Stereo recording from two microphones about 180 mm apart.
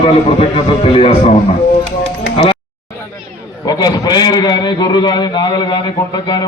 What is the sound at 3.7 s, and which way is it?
A man's voice, 20° left (ahead or behind).